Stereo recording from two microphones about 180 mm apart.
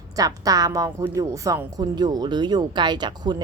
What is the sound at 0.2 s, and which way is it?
A woman's voice, 20° right (ahead or behind).